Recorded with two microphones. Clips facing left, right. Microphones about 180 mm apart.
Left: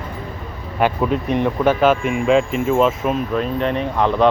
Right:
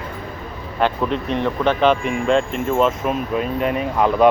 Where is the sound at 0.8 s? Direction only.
10° left (ahead or behind); by 4.3 s 5° right (ahead or behind).